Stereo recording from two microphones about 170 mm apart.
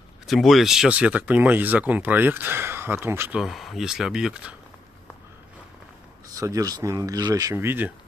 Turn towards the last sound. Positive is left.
turn(degrees=-10)  # may be behind; listen again after turning